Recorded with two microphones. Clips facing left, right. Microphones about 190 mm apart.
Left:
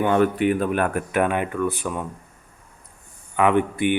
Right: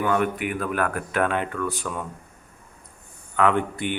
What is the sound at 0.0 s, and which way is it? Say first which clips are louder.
Speech: left 5 dB; 30° left (ahead or behind).